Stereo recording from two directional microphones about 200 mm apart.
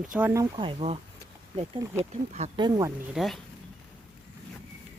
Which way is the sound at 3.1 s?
Centre (ahead or behind).